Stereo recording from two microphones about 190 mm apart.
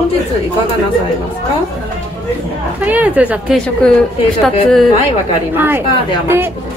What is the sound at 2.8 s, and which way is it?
A woman's voice, 10° right (ahead or behind).